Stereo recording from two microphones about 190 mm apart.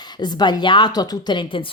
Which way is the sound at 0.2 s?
20° left (ahead or behind).